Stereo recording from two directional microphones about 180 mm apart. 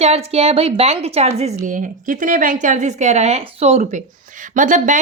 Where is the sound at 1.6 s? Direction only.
45° right (ahead or behind).